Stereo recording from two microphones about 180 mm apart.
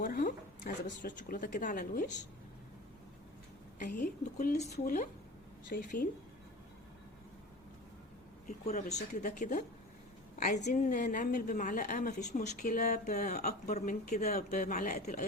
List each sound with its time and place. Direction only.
0.0 s a sound: 50° left (ahead or behind)
1.0 s a woman's voice: 50° left (ahead or behind)
3.8 s a woman's voice: 60° left (ahead or behind)
4.5 s speech: 40° left (ahead or behind)
5.6 s a woman's voice: 50° left (ahead or behind)
8.4 s a woman's voice: 40° left (ahead or behind)